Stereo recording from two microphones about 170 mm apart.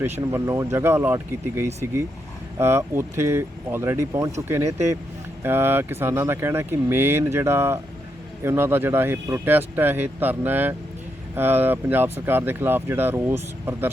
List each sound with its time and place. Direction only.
0.0 s speech: 15° right (ahead or behind)